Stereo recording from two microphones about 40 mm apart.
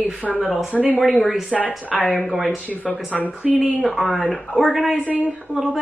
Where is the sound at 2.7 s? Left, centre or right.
Left.